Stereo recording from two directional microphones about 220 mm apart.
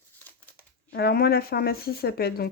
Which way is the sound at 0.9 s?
45° left (ahead or behind).